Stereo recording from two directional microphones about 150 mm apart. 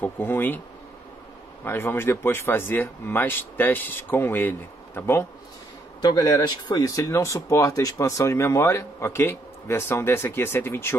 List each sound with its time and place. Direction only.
0.0 s speech: 15° left (ahead or behind)
1.6 s speech: 15° left (ahead or behind)
5.9 s speech: 25° left (ahead or behind)